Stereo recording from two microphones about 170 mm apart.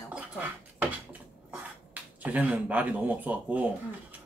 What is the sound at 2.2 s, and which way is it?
Speech, 10° right (ahead or behind).